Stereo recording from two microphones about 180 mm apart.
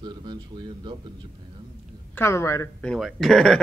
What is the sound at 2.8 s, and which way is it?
Speech, centre (ahead or behind).